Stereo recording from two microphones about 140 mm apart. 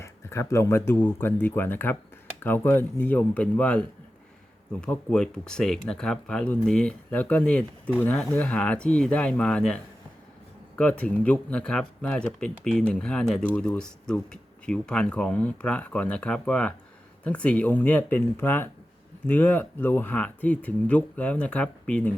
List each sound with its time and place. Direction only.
0.0 s speech: 20° left (ahead or behind)